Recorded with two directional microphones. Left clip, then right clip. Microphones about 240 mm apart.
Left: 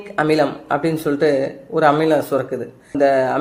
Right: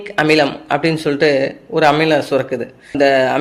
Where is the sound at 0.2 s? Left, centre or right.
Right.